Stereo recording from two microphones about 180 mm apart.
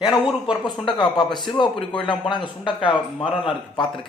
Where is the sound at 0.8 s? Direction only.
25° left (ahead or behind).